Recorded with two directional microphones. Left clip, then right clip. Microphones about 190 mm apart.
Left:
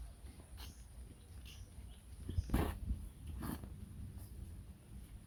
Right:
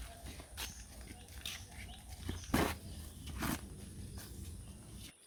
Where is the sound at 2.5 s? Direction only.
15° right (ahead or behind).